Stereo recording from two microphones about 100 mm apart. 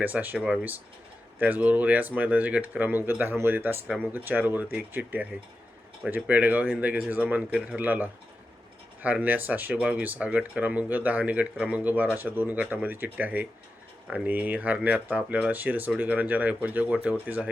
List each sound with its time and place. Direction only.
0.0 s speech: 20° right (ahead or behind)
0.3 s speech: 5° right (ahead or behind)